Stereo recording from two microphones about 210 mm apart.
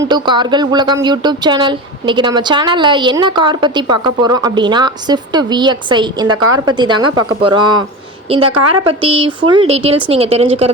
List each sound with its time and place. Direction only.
0.1 s speech: 20° right (ahead or behind)